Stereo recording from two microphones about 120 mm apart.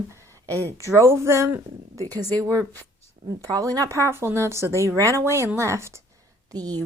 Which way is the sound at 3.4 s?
30° right (ahead or behind).